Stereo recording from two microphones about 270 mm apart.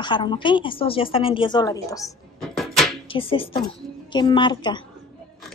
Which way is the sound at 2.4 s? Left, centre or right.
Centre.